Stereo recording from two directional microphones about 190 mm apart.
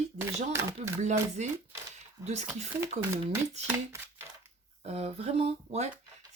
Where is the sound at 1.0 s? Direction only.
40° right (ahead or behind).